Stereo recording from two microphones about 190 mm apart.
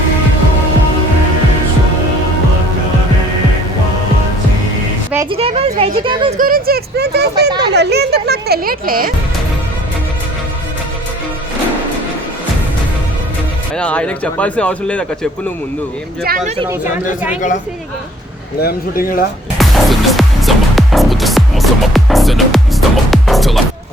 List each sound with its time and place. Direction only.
5.3 s speech: 30° right (ahead or behind)
6.4 s speech: 50° right (ahead or behind)
13.7 s a man's voice: 5° left (ahead or behind)
16.6 s speech: 10° right (ahead or behind)
18.6 s speech: 50° left (ahead or behind)
19.5 s music: centre (ahead or behind)